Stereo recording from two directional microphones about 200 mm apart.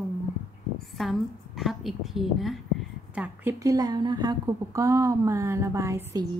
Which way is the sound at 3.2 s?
15° right (ahead or behind).